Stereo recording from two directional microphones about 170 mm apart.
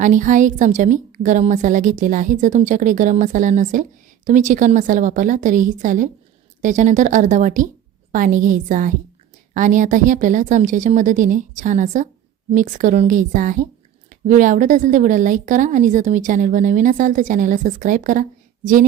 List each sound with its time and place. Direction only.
0.0 s a woman's voice: 50° right (ahead or behind)